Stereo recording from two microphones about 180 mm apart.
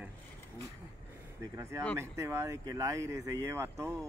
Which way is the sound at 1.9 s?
15° right (ahead or behind).